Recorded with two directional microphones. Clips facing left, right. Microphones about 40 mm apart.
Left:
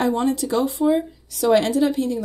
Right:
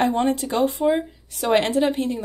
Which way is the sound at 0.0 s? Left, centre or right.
Right.